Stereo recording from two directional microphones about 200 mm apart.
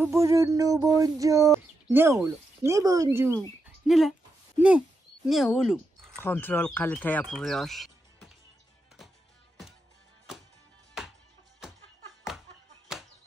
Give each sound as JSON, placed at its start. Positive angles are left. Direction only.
{"t": 0.0, "sound": "a sound", "side_deg": -15}
{"t": 3.3, "sound": "speech", "side_deg": 0}
{"t": 6.1, "sound": "speech", "side_deg": 10}
{"t": 12.9, "sound": "chop", "side_deg": -5}